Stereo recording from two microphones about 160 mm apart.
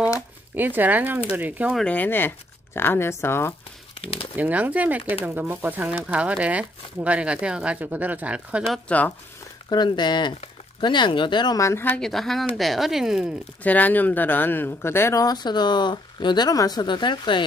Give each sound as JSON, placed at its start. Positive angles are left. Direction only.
{"t": 0.6, "sound": "speech", "side_deg": -10}
{"t": 1.8, "sound": "speech", "side_deg": 10}
{"t": 4.0, "sound": "speech", "side_deg": 35}
{"t": 4.4, "sound": "speech", "side_deg": -10}
{"t": 9.7, "sound": "speech", "side_deg": 25}
{"t": 12.1, "sound": "speech", "side_deg": 0}
{"t": 13.6, "sound": "speech", "side_deg": 10}